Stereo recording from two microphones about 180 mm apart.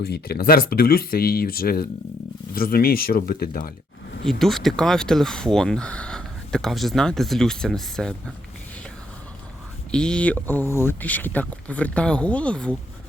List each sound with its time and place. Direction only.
0.0 s speech: 60° left (ahead or behind)
4.3 s speech: centre (ahead or behind)
9.9 s speech: 5° left (ahead or behind)